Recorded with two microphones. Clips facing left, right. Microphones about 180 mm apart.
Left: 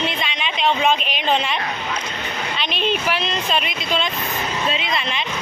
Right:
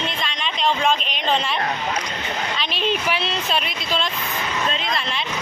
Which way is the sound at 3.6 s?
Centre (ahead or behind).